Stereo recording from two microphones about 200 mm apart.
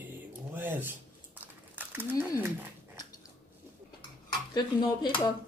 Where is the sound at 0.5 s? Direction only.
10° right (ahead or behind).